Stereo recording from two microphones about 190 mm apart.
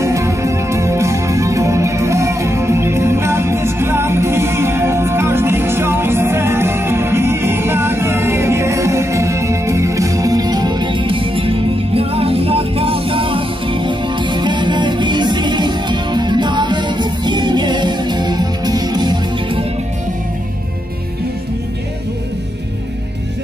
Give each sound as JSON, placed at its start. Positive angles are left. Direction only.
{"t": 0.0, "sound": "music", "side_deg": -15}